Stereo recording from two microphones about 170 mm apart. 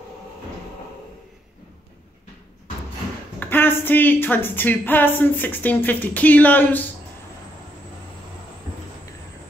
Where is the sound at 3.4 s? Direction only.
10° left (ahead or behind).